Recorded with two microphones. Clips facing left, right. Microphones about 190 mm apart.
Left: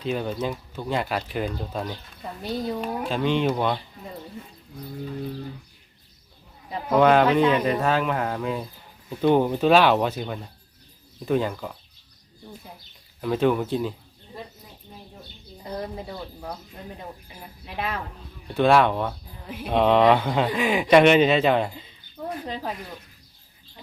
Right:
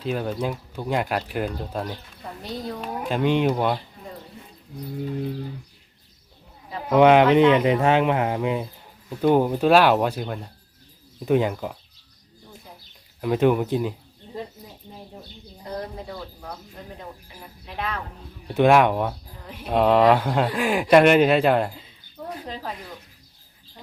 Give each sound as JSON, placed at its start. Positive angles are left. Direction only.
{"t": 0.0, "sound": "speech", "side_deg": -5}
{"t": 3.0, "sound": "speech", "side_deg": -15}
{"t": 6.9, "sound": "speech", "side_deg": -15}
{"t": 9.0, "sound": "speech", "side_deg": -5}
{"t": 11.3, "sound": "speech", "side_deg": -15}
{"t": 13.2, "sound": "speech", "side_deg": -10}
{"t": 16.0, "sound": "speech", "side_deg": 10}
{"t": 17.7, "sound": "speech", "side_deg": 5}
{"t": 18.5, "sound": "speech", "side_deg": -15}
{"t": 19.5, "sound": "speech", "side_deg": 5}